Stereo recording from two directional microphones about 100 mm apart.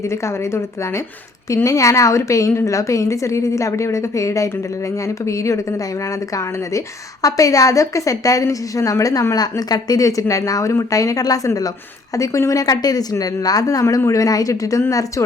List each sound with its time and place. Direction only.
0.1 s a woman's voice: 30° left (ahead or behind)